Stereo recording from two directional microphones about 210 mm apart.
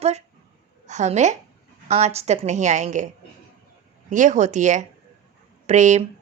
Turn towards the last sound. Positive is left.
turn(degrees=-35)  # may be behind; listen again after turning